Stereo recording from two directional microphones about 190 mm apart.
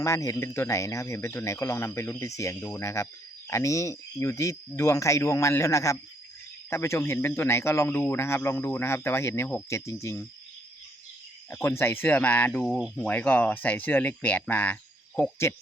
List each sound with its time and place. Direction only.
0.0 s speech: 15° left (ahead or behind)
11.5 s speech: 15° left (ahead or behind)